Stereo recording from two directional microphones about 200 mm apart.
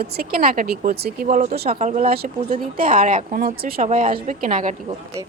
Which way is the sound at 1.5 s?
50° right (ahead or behind).